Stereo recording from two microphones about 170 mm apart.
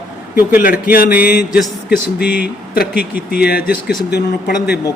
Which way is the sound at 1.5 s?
5° right (ahead or behind).